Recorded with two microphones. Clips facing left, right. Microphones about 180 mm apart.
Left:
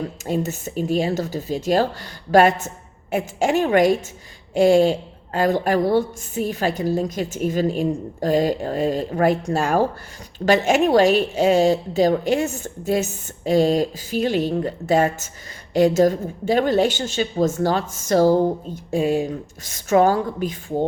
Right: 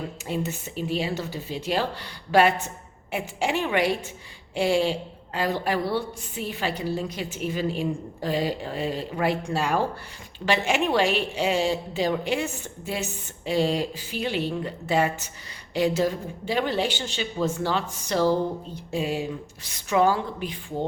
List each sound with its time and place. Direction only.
0.3 s a woman's voice: 45° left (ahead or behind)